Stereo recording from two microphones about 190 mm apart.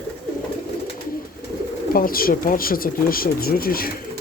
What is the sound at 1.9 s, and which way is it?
Speech, 50° left (ahead or behind).